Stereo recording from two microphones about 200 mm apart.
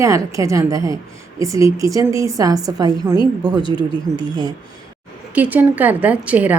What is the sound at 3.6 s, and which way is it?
Speech, 25° left (ahead or behind).